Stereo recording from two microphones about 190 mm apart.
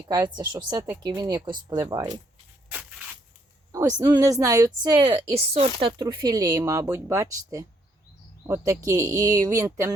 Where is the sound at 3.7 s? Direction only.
15° right (ahead or behind).